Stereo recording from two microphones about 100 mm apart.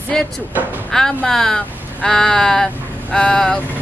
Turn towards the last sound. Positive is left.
turn(degrees=10)  # may be behind; listen again after turning